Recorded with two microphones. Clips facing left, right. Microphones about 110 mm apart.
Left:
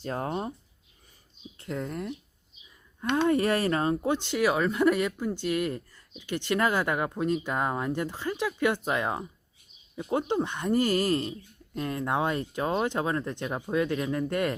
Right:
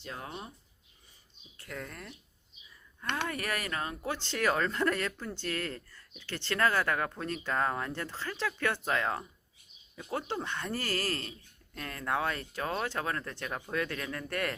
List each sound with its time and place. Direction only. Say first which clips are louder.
0.0 s speech: left 11 dB; 45° left (ahead or behind)
1.5 s speech: left 9 dB; 25° left (ahead or behind)